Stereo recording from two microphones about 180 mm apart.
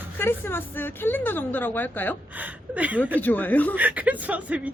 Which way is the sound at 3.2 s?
10° left (ahead or behind).